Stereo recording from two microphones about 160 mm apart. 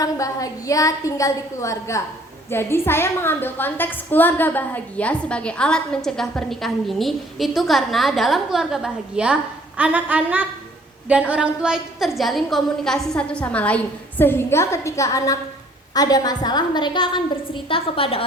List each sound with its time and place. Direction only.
0.0 s a woman's voice: 20° left (ahead or behind)